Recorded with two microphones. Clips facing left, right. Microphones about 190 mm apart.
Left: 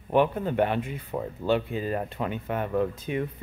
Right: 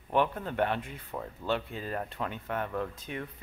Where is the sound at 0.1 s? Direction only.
10° left (ahead or behind).